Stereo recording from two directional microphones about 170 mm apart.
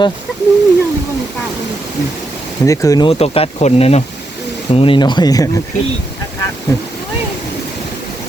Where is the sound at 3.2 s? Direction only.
35° left (ahead or behind).